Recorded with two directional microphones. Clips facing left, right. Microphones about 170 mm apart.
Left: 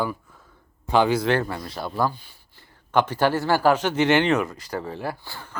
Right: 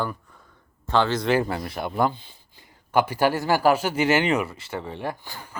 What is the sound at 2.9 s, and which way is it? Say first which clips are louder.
Speech: even; 10° right (ahead or behind).